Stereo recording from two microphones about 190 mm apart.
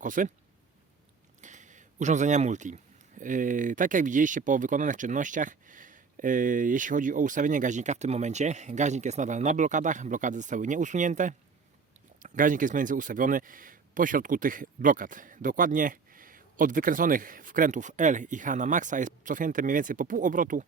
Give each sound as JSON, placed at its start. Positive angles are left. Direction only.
{"t": 0.0, "sound": "speech", "side_deg": -45}
{"t": 1.4, "sound": "a sound", "side_deg": -40}
{"t": 3.2, "sound": "speech", "side_deg": -45}